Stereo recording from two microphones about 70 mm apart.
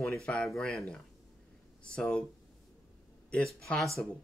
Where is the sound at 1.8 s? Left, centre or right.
Centre.